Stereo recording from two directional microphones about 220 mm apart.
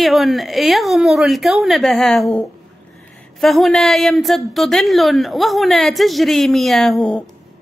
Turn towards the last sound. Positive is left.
turn(degrees=0)  # may be behind; listen again after turning